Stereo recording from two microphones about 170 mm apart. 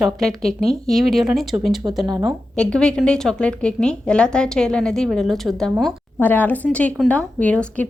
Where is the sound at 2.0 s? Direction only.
25° right (ahead or behind).